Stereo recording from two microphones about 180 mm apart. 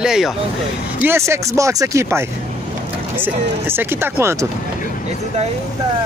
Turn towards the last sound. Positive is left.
turn(degrees=-15)  # may be behind; listen again after turning